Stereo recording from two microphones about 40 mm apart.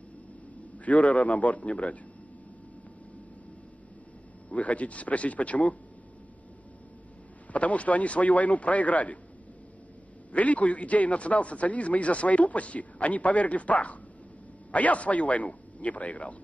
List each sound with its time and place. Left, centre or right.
0.7 s a man's voice: left
4.5 s a man's voice: left
7.5 s a man's voice: left
10.3 s a man's voice: left